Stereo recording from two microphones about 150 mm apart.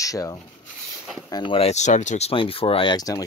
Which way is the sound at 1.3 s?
35° left (ahead or behind).